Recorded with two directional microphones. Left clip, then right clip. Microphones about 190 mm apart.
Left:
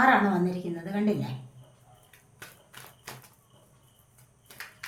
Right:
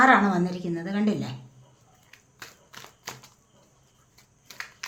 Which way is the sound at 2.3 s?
25° right (ahead or behind).